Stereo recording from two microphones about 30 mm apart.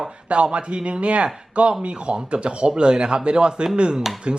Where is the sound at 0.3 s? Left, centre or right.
Right.